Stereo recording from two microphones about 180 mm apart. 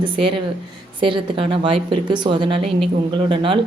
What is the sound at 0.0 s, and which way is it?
A woman's voice, 30° right (ahead or behind).